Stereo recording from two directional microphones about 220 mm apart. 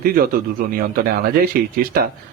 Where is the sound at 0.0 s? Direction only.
40° right (ahead or behind).